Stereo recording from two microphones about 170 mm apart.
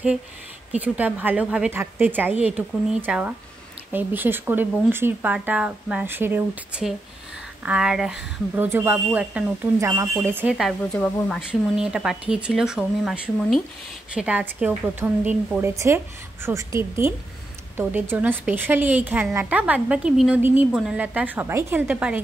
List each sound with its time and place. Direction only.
0.7 s a woman's voice: 10° right (ahead or behind)
10.5 s a woman's voice: centre (ahead or behind)